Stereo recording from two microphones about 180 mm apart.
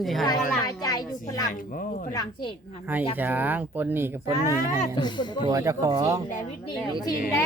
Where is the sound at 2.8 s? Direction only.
10° right (ahead or behind).